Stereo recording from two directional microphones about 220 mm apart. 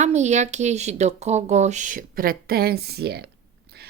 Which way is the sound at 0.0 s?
30° right (ahead or behind).